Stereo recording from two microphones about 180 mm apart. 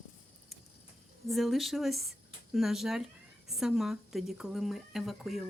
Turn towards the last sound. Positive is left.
turn(degrees=0)  # may be behind; listen again after turning